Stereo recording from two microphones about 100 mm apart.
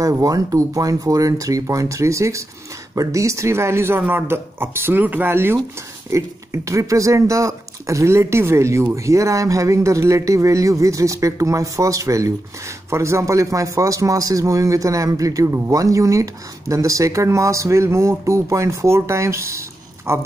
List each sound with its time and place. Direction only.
0.0 s speech: 35° right (ahead or behind)